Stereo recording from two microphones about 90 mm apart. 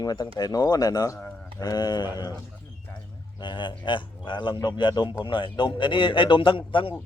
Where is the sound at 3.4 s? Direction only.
60° left (ahead or behind).